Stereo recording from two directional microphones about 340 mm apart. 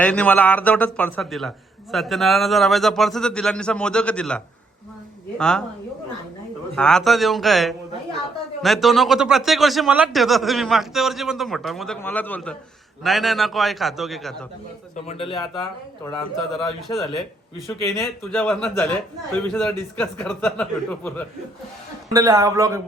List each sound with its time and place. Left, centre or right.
0.0 s a man's voice: centre
6.7 s a man's voice: centre
14.9 s speech: centre
16.0 s a man's voice: centre
22.1 s a man's voice: centre